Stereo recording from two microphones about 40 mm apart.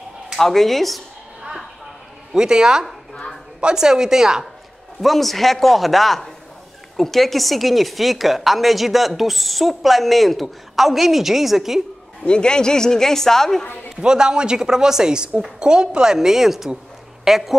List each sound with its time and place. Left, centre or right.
0.4 s a woman's voice: centre
2.3 s a woman's voice: centre
5.0 s a woman's voice: centre
12.3 s a man's voice: left
13.9 s a woman's voice: centre